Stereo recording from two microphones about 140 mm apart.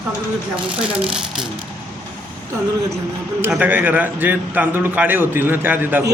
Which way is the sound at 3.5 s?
10° right (ahead or behind).